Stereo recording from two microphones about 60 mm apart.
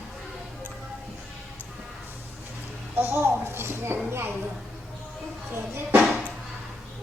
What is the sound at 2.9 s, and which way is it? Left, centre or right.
Speech, right.